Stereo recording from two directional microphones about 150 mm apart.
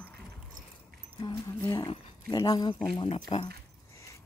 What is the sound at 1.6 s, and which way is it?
Speech, 30° left (ahead or behind).